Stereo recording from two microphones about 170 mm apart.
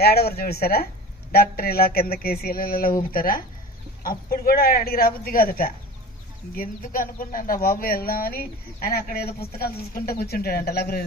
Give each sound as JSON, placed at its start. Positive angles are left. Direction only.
{"t": 0.0, "sound": "speech", "side_deg": 65}